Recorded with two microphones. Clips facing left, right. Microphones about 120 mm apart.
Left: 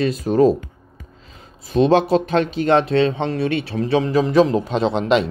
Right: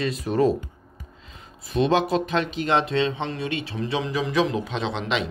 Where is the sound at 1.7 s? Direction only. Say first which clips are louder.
Left 6 dB; 30° left (ahead or behind).